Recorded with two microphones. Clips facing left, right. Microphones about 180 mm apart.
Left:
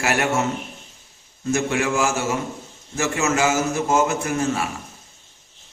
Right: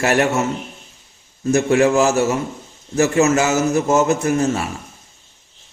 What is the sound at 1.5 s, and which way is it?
A man's voice, 35° right (ahead or behind).